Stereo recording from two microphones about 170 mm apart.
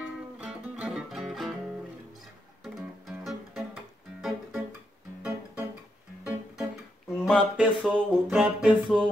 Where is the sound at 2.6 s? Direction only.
Centre (ahead or behind).